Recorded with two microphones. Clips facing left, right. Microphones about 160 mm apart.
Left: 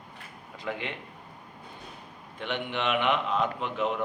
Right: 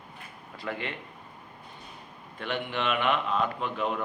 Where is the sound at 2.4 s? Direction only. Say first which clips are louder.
Even; 20° left (ahead or behind).